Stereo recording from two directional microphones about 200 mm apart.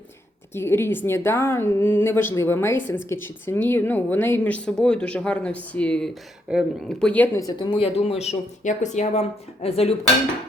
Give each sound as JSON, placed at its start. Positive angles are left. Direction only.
{"t": 0.5, "sound": "speech", "side_deg": 10}